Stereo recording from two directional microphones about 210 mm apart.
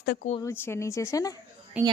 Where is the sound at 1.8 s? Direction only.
5° right (ahead or behind).